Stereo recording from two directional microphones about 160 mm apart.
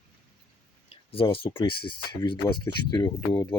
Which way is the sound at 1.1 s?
35° left (ahead or behind).